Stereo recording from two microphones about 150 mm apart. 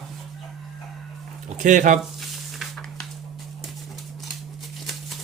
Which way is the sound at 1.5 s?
60° right (ahead or behind).